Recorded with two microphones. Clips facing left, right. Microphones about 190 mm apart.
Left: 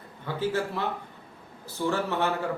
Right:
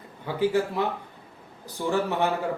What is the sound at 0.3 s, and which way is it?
Speech, 15° right (ahead or behind).